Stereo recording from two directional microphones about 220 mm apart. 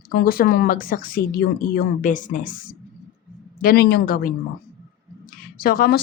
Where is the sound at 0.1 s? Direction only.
40° left (ahead or behind).